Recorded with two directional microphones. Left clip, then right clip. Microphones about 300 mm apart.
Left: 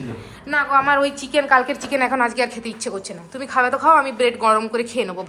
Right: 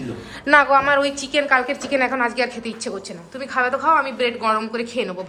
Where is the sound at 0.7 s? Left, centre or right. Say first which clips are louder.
Even; centre.